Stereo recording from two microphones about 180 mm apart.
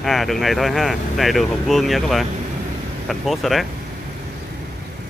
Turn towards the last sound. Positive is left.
turn(degrees=0)  # may be behind; listen again after turning